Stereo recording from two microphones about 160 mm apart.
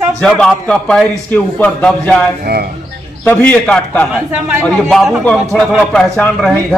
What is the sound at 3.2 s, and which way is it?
A man's voice, 10° left (ahead or behind).